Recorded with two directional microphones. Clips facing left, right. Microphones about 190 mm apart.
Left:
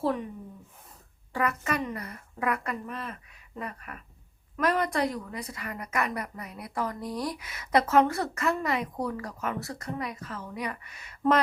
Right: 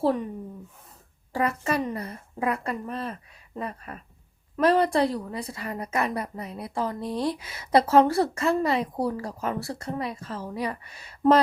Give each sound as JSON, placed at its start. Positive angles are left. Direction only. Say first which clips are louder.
{"t": 1.3, "sound": "a woman's voice", "louder": "right 3 dB", "side_deg": -30}